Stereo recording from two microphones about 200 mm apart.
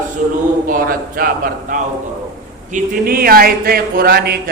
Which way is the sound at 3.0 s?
50° right (ahead or behind).